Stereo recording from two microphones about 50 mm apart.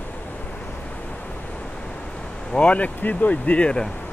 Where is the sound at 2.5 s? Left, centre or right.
Left.